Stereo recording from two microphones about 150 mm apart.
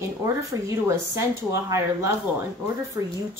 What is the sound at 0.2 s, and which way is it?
Speech, 20° right (ahead or behind).